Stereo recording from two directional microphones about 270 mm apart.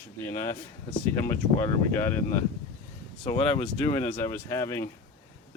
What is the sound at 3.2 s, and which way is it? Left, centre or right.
Speech, centre.